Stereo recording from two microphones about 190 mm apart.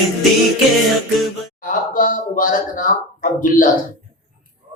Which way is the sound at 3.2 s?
45° left (ahead or behind).